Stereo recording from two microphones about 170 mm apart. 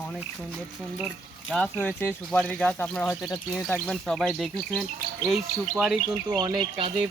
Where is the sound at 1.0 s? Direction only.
Centre (ahead or behind).